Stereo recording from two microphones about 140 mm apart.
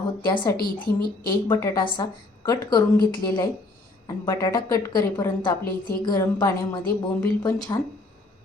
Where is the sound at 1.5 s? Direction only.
20° left (ahead or behind).